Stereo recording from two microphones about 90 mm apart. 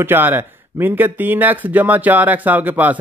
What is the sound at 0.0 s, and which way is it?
Speech, 25° right (ahead or behind).